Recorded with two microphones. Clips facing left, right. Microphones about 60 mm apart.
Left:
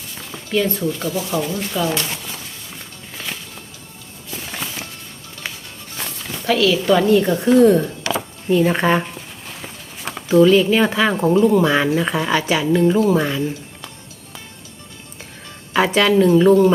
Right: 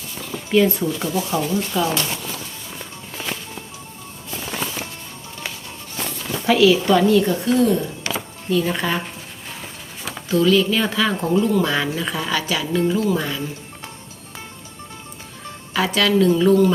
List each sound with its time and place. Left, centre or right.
0.5 s speech: centre
6.4 s speech: centre
7.1 s speech: left
10.2 s speech: left
15.7 s speech: left